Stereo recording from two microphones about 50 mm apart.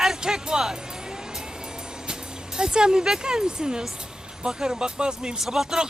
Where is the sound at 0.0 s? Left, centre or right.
Centre.